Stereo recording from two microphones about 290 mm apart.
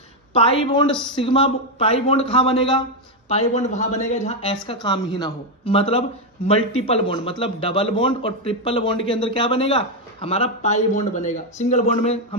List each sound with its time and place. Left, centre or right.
0.3 s a man's voice: centre